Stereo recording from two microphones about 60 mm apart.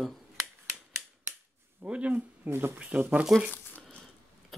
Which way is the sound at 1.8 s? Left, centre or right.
Right.